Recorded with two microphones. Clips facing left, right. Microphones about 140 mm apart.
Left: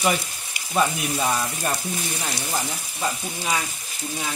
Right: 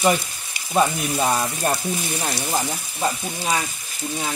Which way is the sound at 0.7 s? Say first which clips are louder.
Right 3 dB; 30° right (ahead or behind).